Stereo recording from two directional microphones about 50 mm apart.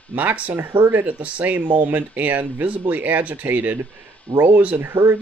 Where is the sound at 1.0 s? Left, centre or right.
Right.